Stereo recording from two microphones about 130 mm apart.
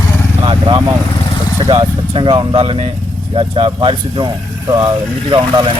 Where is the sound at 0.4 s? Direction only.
40° right (ahead or behind).